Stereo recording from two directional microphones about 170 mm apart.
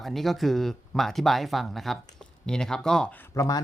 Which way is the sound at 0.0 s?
Centre (ahead or behind).